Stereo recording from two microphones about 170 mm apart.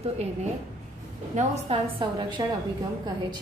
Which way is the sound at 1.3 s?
35° right (ahead or behind).